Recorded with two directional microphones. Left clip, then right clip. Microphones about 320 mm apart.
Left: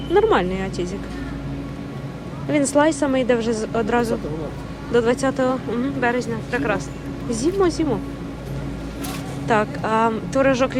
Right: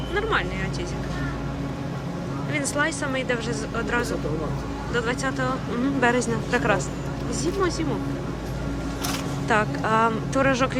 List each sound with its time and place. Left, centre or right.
0.1 s speech: centre
2.5 s speech: centre
9.5 s speech: centre